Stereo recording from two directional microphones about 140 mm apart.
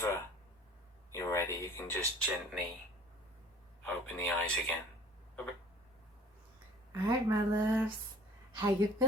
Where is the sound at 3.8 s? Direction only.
10° left (ahead or behind).